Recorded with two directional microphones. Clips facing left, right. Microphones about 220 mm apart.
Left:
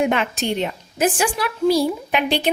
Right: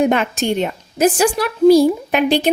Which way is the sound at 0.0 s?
40° right (ahead or behind).